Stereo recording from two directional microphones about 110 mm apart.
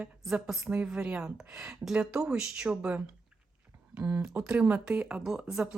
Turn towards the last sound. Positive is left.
turn(degrees=-5)  # may be behind; listen again after turning